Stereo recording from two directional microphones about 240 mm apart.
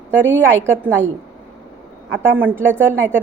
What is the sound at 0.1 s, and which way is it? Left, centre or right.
Speech, centre.